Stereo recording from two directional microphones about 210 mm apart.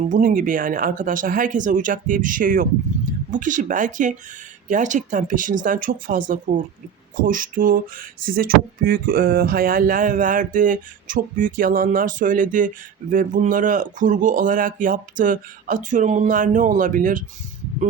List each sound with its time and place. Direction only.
0.1 s speech: 40° right (ahead or behind)